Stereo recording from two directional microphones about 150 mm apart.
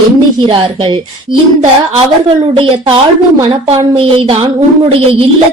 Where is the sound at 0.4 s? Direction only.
35° right (ahead or behind).